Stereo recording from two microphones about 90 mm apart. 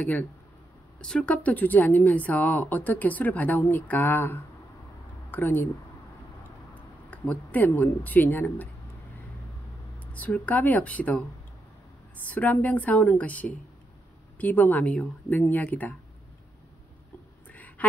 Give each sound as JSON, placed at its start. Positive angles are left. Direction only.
{"t": 0.0, "sound": "speech", "side_deg": 20}
{"t": 6.7, "sound": "speech", "side_deg": 15}
{"t": 10.1, "sound": "speech", "side_deg": 15}
{"t": 17.5, "sound": "quack", "side_deg": 15}